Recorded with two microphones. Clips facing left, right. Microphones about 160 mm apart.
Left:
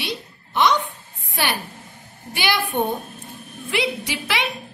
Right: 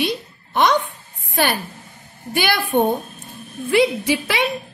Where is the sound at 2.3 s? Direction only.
50° right (ahead or behind).